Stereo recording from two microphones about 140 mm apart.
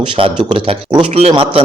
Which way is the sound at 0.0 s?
40° right (ahead or behind).